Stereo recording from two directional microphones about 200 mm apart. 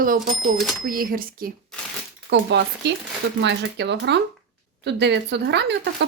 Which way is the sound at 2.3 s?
55° right (ahead or behind).